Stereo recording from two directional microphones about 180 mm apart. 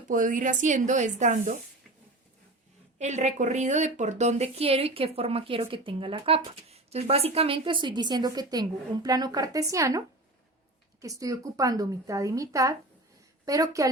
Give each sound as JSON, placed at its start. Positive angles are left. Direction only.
{"t": 0.1, "sound": "speech", "side_deg": -45}
{"t": 3.0, "sound": "a woman's voice", "side_deg": -40}
{"t": 11.0, "sound": "a woman's voice", "side_deg": -20}